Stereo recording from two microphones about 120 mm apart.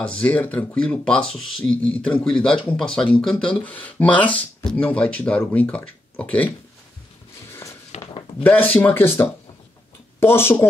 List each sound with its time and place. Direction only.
0.0 s speech: 10° left (ahead or behind)
7.9 s a sound: 65° left (ahead or behind)
8.4 s speech: 15° left (ahead or behind)